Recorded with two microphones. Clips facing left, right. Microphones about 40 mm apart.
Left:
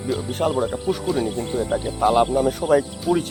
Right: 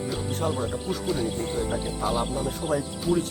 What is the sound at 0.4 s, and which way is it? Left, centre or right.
Speech, left.